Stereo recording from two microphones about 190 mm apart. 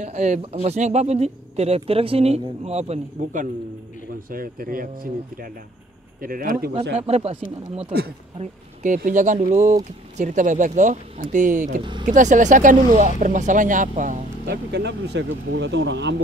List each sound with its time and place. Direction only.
0.0 s speech: 35° right (ahead or behind)
4.3 s speech: 50° right (ahead or behind)
7.1 s speech: 35° right (ahead or behind)
14.7 s speech: 65° right (ahead or behind)